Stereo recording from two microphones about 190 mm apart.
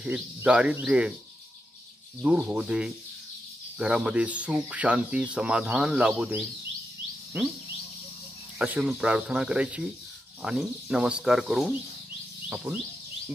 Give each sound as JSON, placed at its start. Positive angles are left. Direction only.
{"t": 0.0, "sound": "speech", "side_deg": -5}
{"t": 2.2, "sound": "speech", "side_deg": -5}
{"t": 8.5, "sound": "speech", "side_deg": -10}